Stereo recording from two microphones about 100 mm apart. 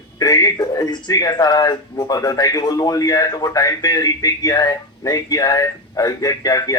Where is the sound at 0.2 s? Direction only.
40° left (ahead or behind).